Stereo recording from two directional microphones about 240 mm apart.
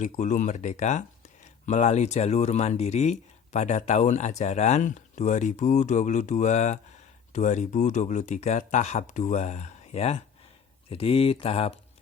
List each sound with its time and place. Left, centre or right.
0.0 s speech: left